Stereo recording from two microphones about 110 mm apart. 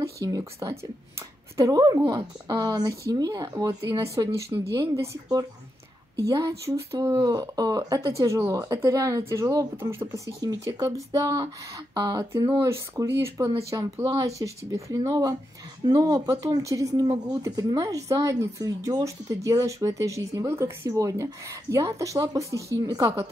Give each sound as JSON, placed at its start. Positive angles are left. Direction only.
{"t": 0.0, "sound": "speech", "side_deg": -30}